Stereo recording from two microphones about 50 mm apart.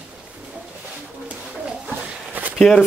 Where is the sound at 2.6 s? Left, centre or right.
Centre.